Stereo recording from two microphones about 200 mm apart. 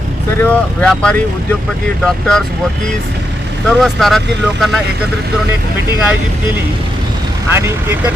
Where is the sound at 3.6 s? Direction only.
Centre (ahead or behind).